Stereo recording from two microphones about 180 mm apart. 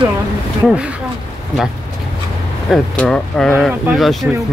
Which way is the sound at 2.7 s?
5° left (ahead or behind).